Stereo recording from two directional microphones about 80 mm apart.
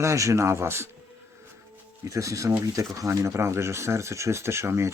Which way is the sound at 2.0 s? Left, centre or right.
Right.